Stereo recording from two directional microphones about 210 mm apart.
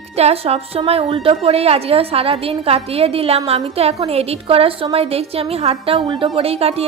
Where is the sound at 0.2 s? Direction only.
30° right (ahead or behind).